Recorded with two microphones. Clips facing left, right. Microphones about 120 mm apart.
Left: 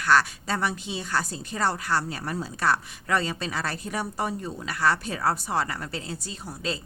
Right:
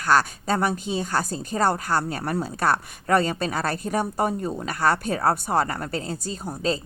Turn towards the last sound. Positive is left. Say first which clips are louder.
# right 7 dB
turn(degrees=-40)  # may be behind; listen again after turning